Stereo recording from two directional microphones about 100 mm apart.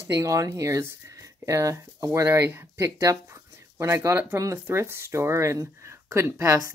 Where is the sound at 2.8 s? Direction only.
30° right (ahead or behind).